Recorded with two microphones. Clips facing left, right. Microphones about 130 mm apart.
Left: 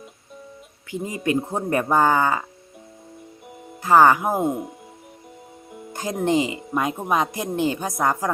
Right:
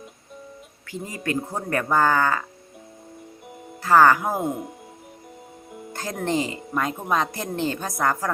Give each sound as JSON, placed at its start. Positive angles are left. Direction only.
{"t": 0.9, "sound": "speech", "side_deg": 20}
{"t": 3.8, "sound": "speech", "side_deg": 15}
{"t": 4.4, "sound": "speech", "side_deg": 0}
{"t": 5.9, "sound": "music", "side_deg": 15}
{"t": 6.2, "sound": "speech", "side_deg": 15}